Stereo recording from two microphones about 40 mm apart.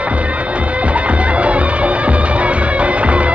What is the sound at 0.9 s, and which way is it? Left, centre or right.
Music, right.